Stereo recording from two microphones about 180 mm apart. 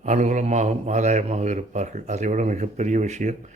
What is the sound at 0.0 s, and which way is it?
A man's voice, 40° right (ahead or behind).